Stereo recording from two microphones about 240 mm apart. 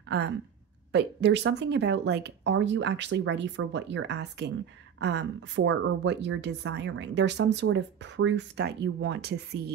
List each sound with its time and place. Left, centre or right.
0.9 s speech: right